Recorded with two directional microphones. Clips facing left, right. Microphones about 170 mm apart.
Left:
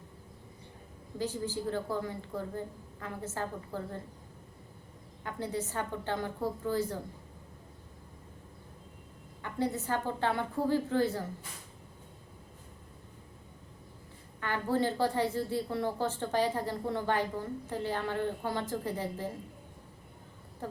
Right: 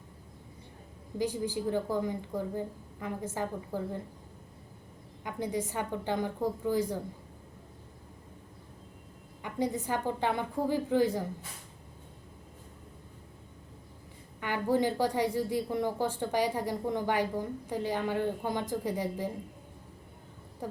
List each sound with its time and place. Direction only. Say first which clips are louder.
1.2 s a woman's voice: right 3 dB; 15° right (ahead or behind)
5.2 s a woman's voice: right 2 dB; 15° right (ahead or behind)
9.4 s a woman's voice: right 1 dB; 15° right (ahead or behind)
14.4 s a woman's voice: right 2 dB; 15° right (ahead or behind)
20.6 s a woman's voice: right 2 dB; 15° right (ahead or behind)